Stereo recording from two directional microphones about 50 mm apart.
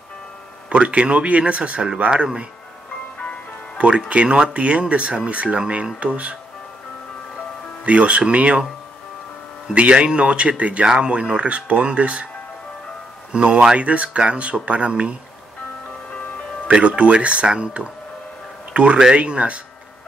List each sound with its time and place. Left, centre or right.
0.7 s speech: right
3.7 s music: right
4.1 s speech: right
7.8 s speech: right
9.8 s speech: right
13.3 s speech: right
16.6 s speech: right